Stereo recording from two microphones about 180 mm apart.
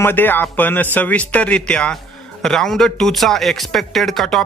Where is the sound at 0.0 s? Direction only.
10° left (ahead or behind).